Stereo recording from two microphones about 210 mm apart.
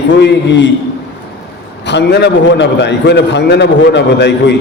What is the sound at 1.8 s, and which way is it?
A man's voice, 55° left (ahead or behind).